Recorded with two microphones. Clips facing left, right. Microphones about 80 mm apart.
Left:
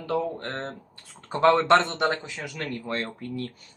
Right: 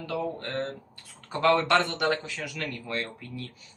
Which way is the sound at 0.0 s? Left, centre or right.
Left.